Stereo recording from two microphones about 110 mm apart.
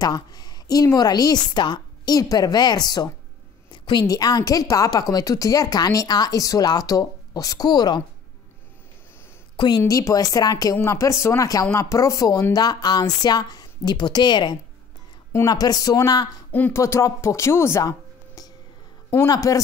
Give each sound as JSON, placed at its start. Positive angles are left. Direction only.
{"t": 0.0, "sound": "a woman's voice", "side_deg": 35}
{"t": 9.6, "sound": "a woman's voice", "side_deg": 35}